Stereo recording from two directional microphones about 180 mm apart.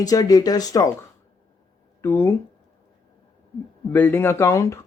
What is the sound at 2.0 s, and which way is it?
Speech, 10° left (ahead or behind).